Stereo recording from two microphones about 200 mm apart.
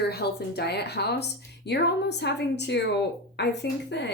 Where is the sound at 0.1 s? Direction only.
55° left (ahead or behind).